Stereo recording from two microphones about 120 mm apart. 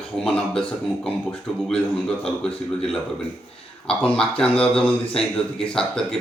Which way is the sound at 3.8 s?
5° left (ahead or behind).